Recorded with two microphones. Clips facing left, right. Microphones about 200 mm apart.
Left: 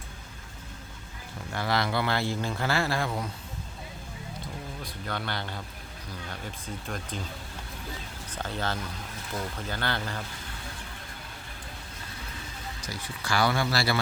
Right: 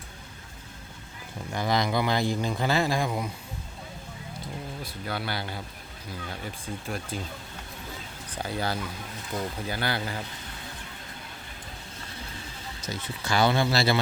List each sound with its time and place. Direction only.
1.5 s speech: 15° right (ahead or behind)
4.8 s speech: 10° right (ahead or behind)
8.4 s speech: 10° right (ahead or behind)
12.8 s speech: 20° right (ahead or behind)